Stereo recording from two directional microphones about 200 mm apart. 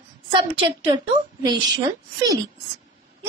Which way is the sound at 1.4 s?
20° right (ahead or behind).